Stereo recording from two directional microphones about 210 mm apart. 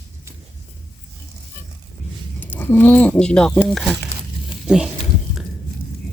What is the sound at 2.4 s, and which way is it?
Speech, 10° left (ahead or behind).